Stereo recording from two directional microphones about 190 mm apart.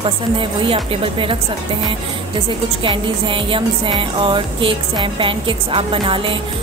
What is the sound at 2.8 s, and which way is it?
Music, 25° right (ahead or behind).